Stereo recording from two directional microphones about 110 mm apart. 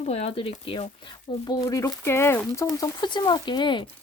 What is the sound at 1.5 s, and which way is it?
Speech, 30° left (ahead or behind).